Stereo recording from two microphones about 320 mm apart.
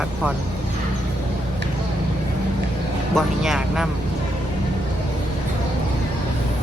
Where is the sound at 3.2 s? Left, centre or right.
Centre.